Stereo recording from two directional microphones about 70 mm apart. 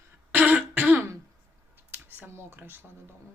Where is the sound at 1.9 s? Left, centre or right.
Right.